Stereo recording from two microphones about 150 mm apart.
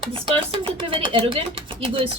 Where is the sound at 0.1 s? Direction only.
35° right (ahead or behind).